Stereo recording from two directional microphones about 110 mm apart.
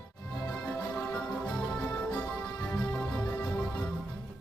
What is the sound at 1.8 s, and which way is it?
Music, 20° left (ahead or behind).